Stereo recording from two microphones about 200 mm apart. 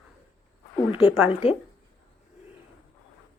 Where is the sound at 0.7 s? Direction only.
25° left (ahead or behind).